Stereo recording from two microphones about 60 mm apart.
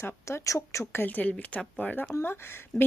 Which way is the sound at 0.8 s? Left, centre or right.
Left.